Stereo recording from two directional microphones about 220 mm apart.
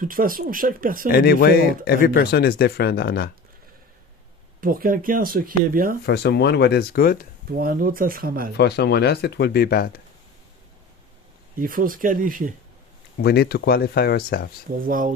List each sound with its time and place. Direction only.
0.0 s speech: 40° right (ahead or behind)
1.1 s speech: 45° left (ahead or behind)
4.6 s speech: 40° right (ahead or behind)
6.1 s speech: 50° left (ahead or behind)
7.5 s speech: 40° right (ahead or behind)
8.5 s speech: 50° left (ahead or behind)
11.6 s speech: 40° right (ahead or behind)
13.2 s speech: 45° left (ahead or behind)
14.8 s speech: 40° right (ahead or behind)